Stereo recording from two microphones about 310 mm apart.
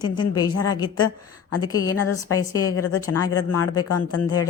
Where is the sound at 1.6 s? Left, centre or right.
Centre.